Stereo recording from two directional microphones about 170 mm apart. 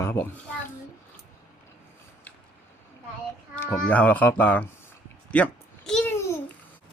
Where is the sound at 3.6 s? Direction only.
10° left (ahead or behind).